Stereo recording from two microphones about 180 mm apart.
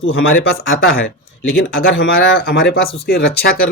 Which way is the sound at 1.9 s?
75° left (ahead or behind).